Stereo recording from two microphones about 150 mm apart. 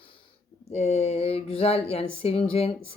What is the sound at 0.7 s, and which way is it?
Speech, 45° left (ahead or behind).